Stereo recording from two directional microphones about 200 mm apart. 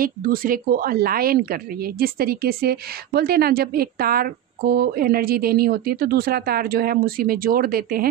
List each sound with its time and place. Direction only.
0.0 s a woman's voice: 45° right (ahead or behind)